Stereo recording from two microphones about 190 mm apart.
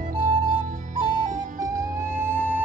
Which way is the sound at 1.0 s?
45° right (ahead or behind).